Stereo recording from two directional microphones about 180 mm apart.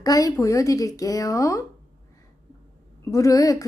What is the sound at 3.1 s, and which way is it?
Speech, 20° left (ahead or behind).